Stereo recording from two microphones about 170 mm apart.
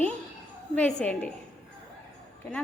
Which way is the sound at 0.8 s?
10° left (ahead or behind).